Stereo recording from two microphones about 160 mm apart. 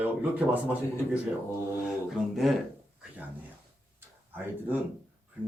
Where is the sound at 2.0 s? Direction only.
Centre (ahead or behind).